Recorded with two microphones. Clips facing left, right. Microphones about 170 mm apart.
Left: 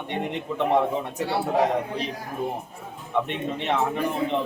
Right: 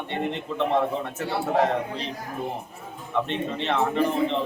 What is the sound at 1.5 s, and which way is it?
Speech, 15° left (ahead or behind).